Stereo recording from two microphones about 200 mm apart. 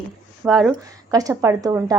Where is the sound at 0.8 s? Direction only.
15° right (ahead or behind).